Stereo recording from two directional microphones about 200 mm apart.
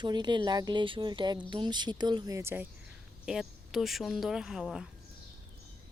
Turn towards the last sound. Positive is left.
turn(degrees=0)  # may be behind; listen again after turning